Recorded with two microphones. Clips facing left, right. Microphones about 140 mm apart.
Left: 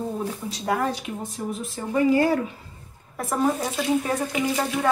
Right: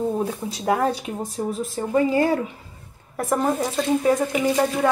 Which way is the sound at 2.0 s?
25° right (ahead or behind).